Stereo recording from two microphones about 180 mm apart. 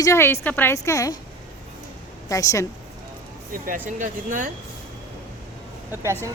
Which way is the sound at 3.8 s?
45° right (ahead or behind).